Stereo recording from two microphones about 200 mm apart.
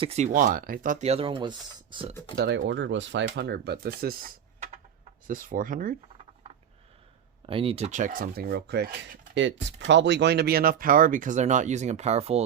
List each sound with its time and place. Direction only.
0.0 s speech: 30° right (ahead or behind)
2.4 s speech: 60° right (ahead or behind); by 6.0 s 45° right (ahead or behind)
7.4 s speech: 25° right (ahead or behind)